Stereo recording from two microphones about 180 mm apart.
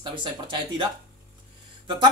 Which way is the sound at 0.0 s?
25° right (ahead or behind).